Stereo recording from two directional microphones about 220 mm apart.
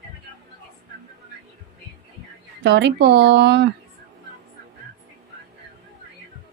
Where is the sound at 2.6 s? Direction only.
50° right (ahead or behind).